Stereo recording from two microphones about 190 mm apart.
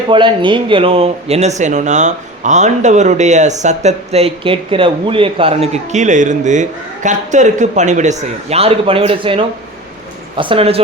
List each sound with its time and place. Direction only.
0.1 s speech: 25° right (ahead or behind)